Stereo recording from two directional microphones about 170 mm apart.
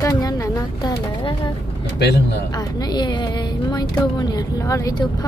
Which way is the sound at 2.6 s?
25° left (ahead or behind).